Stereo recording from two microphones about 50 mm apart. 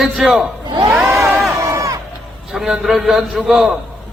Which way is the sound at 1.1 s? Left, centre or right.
Right.